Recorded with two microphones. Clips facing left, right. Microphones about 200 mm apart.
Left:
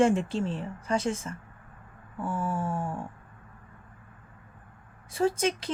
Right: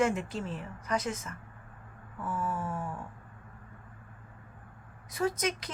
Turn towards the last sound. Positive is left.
turn(degrees=30)  # may be behind; listen again after turning